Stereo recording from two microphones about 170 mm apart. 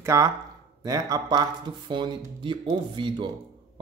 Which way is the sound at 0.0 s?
15° right (ahead or behind).